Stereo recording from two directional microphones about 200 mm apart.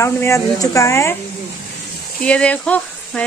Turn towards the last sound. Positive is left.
turn(degrees=5)  # may be behind; listen again after turning